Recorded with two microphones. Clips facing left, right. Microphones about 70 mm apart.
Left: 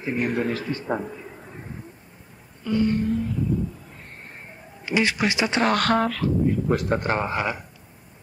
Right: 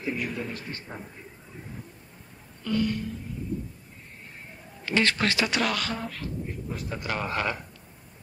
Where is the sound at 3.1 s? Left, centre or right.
Left.